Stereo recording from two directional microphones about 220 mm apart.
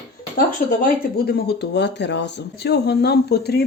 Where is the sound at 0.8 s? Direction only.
45° left (ahead or behind).